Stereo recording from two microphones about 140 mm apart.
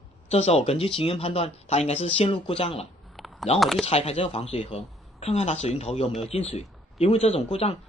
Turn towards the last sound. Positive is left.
turn(degrees=45)  # may be behind; listen again after turning